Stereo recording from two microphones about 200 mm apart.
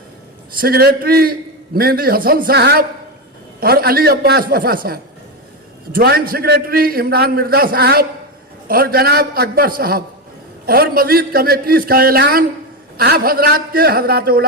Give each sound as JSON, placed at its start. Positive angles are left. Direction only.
{"t": 0.6, "sound": "a man's voice", "side_deg": -50}